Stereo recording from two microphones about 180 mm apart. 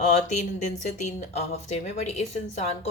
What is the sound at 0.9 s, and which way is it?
Speech, 40° left (ahead or behind).